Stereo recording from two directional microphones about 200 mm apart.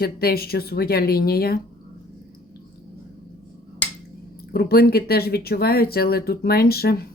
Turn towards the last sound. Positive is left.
turn(degrees=50)  # may be behind; listen again after turning